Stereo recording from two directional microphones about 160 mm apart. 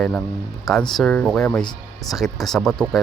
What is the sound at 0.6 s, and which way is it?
Speech, centre (ahead or behind).